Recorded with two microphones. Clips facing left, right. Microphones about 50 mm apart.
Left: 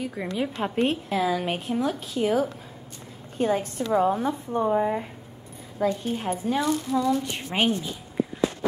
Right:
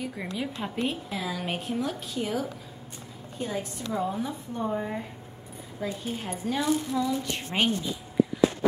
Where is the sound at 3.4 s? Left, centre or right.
Left.